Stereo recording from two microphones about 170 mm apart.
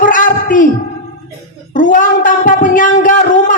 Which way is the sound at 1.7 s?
50° left (ahead or behind).